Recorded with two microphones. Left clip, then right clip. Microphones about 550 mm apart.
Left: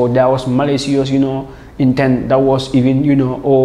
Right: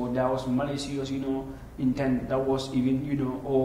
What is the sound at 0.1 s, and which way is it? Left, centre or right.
A man's voice, left.